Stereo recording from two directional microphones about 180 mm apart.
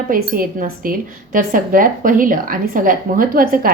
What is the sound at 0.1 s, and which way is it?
A woman's voice, 50° right (ahead or behind).